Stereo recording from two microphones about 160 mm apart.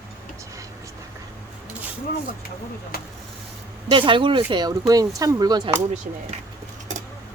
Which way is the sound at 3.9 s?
30° right (ahead or behind).